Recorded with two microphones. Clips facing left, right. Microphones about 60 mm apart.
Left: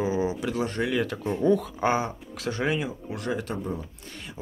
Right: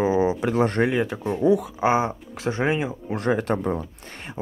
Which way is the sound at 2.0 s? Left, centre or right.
Right.